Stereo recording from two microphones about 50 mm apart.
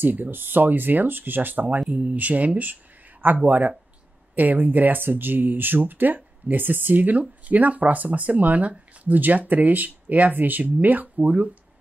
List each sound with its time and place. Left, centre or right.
0.0 s speech: right